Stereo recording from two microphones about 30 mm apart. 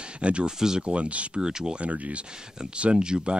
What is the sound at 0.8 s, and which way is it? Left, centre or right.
Speech, right.